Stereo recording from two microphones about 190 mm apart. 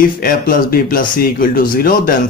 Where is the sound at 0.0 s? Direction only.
50° left (ahead or behind).